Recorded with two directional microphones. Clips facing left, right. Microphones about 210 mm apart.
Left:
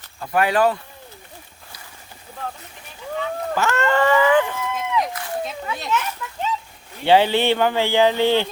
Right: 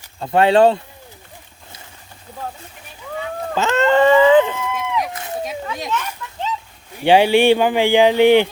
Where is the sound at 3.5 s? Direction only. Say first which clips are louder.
Right 5 dB; 20° right (ahead or behind).